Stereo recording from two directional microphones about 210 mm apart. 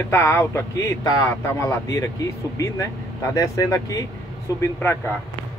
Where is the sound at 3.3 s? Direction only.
15° left (ahead or behind).